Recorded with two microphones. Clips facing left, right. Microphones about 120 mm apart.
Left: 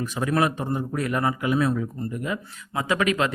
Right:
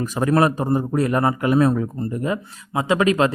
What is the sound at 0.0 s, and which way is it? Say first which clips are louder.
Speech: right 5 dB; 40° right (ahead or behind).